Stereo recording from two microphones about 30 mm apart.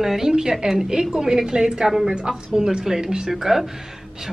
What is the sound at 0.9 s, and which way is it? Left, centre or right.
A woman's voice, right.